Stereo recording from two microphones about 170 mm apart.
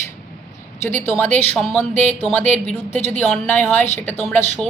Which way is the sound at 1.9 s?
10° left (ahead or behind).